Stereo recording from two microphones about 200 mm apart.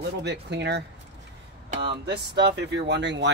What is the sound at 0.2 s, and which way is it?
Speech, 55° right (ahead or behind).